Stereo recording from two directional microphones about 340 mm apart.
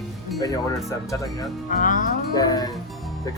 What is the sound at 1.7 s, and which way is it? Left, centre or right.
Music, left.